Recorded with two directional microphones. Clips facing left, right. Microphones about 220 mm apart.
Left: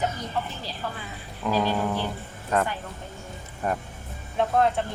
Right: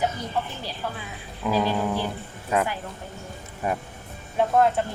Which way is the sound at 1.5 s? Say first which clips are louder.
Right 1 dB; 5° right (ahead or behind).